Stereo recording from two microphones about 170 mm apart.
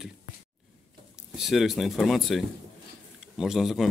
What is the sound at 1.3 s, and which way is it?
Speech, centre (ahead or behind).